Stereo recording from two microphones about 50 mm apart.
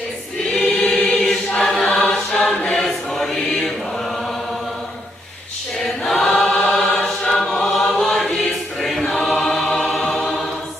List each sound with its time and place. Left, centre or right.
0.5 s choir: centre
1.5 s chant: centre
2.0 s chant: left
2.3 s choir: centre
3.3 s chant: centre
5.8 s choir: centre
6.4 s chant: centre
8.8 s choir: centre
9.3 s music: centre